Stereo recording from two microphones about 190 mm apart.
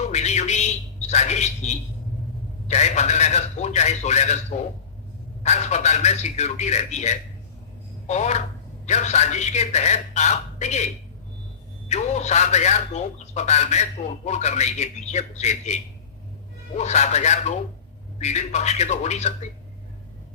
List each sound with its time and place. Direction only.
0.1 s a sound: 35° left (ahead or behind)
2.6 s a man's voice: 35° left (ahead or behind)
11.9 s a man's voice: 35° left (ahead or behind)